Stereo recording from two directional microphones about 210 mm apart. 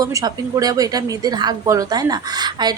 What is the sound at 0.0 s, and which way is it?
A woman's voice, 15° right (ahead or behind).